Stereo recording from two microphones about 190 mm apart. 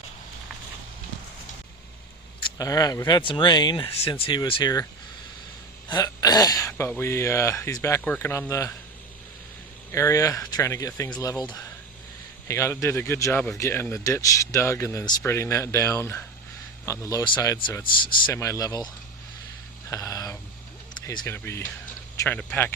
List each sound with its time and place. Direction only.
2.6 s speech: 20° left (ahead or behind)
5.9 s speech: 20° left (ahead or behind)
9.9 s speech: 15° left (ahead or behind)
12.5 s speech: 15° left (ahead or behind)
19.9 s a sound: 15° left (ahead or behind)
21.1 s speech: 15° left (ahead or behind)